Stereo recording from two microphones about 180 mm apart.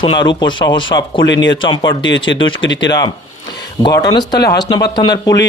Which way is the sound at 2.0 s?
90° left.